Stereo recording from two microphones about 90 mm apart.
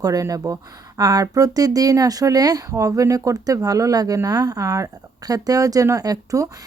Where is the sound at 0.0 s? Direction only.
40° right (ahead or behind).